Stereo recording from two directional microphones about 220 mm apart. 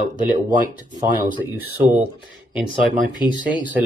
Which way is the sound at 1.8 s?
5° right (ahead or behind).